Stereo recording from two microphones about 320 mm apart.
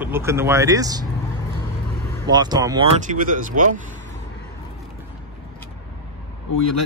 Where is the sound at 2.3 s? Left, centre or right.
Centre.